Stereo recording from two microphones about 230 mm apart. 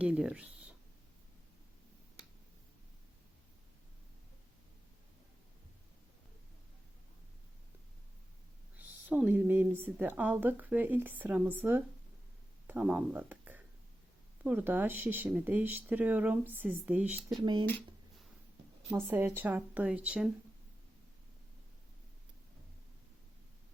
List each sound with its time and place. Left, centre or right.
0.0 s speech: centre
8.7 s a woman's voice: centre
17.4 s speech: right
18.9 s a woman's voice: centre